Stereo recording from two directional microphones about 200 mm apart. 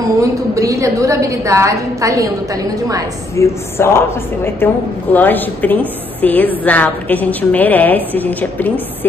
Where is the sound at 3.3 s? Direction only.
10° left (ahead or behind).